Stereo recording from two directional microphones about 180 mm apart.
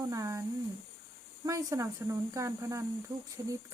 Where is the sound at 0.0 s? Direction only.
20° right (ahead or behind).